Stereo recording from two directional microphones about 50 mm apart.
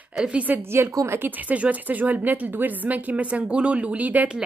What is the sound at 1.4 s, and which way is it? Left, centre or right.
Speech, right.